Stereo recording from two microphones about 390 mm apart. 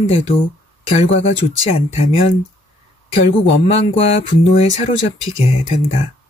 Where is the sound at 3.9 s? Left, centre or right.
Centre.